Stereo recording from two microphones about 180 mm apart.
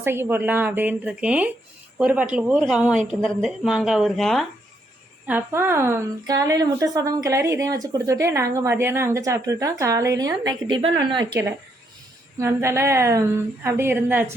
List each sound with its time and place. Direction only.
0.0 s a woman's voice: 10° right (ahead or behind)
5.2 s a woman's voice: 10° right (ahead or behind)
12.4 s a woman's voice: 15° right (ahead or behind)